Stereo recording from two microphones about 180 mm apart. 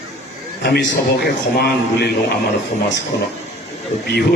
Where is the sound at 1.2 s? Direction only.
65° left (ahead or behind).